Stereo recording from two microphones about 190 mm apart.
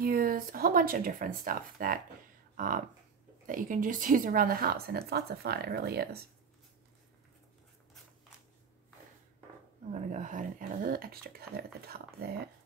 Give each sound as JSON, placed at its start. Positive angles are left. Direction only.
{"t": 0.0, "sound": "speech", "side_deg": -50}
{"t": 9.9, "sound": "speech", "side_deg": -40}